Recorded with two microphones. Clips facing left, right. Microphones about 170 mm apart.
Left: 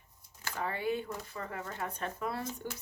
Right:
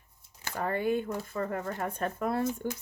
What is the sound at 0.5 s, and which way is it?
Speech, 50° right (ahead or behind).